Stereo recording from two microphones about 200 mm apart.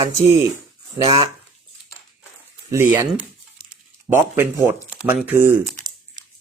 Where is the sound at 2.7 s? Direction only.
15° right (ahead or behind).